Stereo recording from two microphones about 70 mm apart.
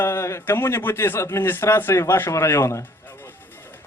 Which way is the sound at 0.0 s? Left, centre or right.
Left.